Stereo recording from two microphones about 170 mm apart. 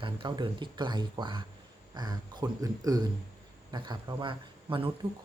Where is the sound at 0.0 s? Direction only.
30° right (ahead or behind).